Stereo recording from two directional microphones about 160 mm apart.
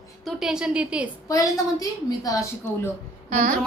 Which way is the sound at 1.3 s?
20° left (ahead or behind).